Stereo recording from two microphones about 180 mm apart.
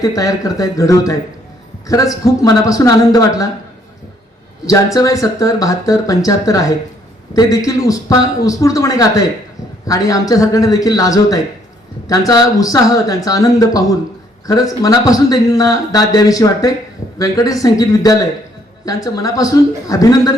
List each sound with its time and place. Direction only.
0.0 s speech: 20° left (ahead or behind)
4.6 s speech: 20° left (ahead or behind)
10.1 s speech: 20° left (ahead or behind)